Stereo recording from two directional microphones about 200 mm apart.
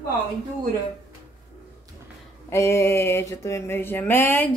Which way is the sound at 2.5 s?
15° left (ahead or behind).